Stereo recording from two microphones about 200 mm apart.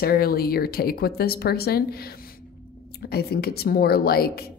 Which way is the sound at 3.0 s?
50° left (ahead or behind).